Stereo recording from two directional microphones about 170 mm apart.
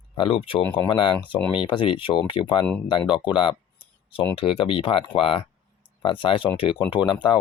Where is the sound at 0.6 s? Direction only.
10° left (ahead or behind).